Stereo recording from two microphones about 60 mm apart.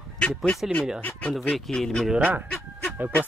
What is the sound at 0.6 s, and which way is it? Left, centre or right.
Speech, centre.